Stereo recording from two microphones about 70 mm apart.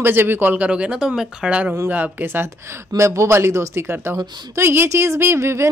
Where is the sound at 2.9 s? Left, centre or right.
Right.